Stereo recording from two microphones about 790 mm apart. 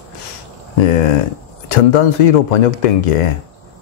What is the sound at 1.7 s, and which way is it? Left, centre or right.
Speech, left.